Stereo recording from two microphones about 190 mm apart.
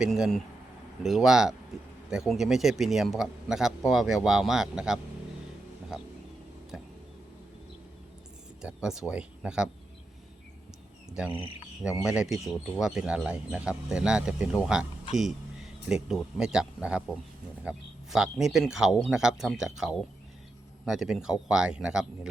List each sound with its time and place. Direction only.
0.0 s speech: centre (ahead or behind)
8.6 s speech: 5° right (ahead or behind)
11.3 s speech: 30° left (ahead or behind)
11.8 s speech: 5° right (ahead or behind)